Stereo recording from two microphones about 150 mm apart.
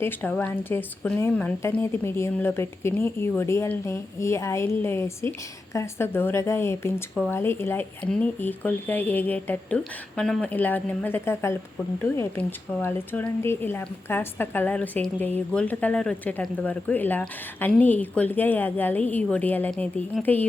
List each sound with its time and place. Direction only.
0.0 s speech: 15° left (ahead or behind)